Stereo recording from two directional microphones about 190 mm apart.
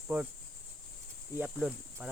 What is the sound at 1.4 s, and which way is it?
Cricket, 10° right (ahead or behind).